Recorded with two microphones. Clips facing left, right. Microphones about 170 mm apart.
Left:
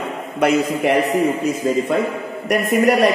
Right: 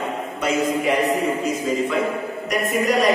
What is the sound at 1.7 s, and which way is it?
Speech, 50° left (ahead or behind).